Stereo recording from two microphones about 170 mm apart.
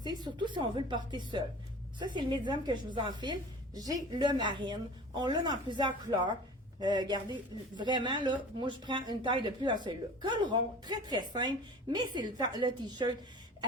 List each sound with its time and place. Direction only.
0.0 s speech: 25° right (ahead or behind)